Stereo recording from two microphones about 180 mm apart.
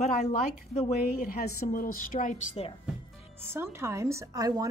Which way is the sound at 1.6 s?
50° left (ahead or behind).